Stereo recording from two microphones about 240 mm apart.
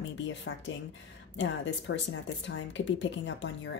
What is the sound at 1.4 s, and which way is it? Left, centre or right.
Speech, left.